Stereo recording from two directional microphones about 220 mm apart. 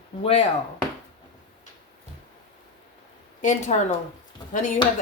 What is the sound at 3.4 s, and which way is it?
Speech, 35° left (ahead or behind).